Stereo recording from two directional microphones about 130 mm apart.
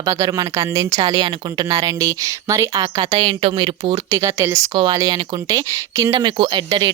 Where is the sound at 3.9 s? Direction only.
25° right (ahead or behind).